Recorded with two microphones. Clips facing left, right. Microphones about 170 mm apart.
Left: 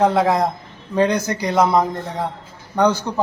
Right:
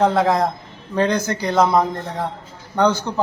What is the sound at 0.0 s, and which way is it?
Speech, 5° left (ahead or behind).